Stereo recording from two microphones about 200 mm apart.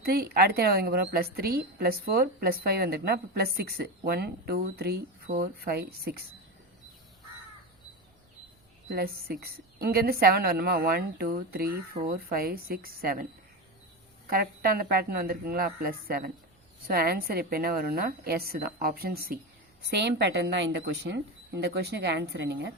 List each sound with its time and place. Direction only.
0.0 s a woman's voice: 50° right (ahead or behind)
8.9 s a woman's voice: 50° right (ahead or behind)
14.3 s a woman's voice: 50° right (ahead or behind)